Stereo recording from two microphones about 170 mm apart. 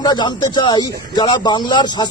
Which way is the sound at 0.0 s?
25° left (ahead or behind).